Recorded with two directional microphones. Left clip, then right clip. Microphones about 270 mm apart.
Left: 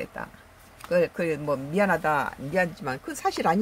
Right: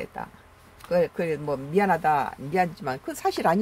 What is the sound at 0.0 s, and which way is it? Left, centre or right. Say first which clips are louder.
Speech: even; centre.